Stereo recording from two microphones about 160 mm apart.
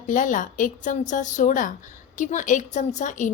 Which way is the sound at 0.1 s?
55° left (ahead or behind).